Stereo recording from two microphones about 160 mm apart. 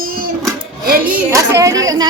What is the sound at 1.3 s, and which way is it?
Speech, 20° right (ahead or behind).